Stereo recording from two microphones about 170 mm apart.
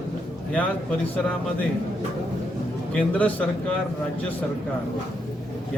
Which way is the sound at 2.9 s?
10° left (ahead or behind).